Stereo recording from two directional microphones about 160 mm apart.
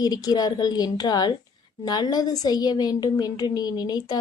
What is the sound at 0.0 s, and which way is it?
A woman's voice, 25° left (ahead or behind).